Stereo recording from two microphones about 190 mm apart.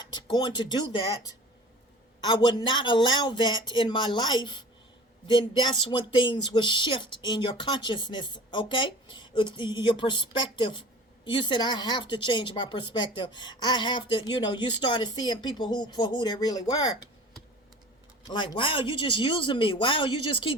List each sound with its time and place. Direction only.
0.0 s speech: 25° left (ahead or behind)
2.2 s a woman's voice: 25° left (ahead or behind)
18.3 s a woman's voice: 25° left (ahead or behind)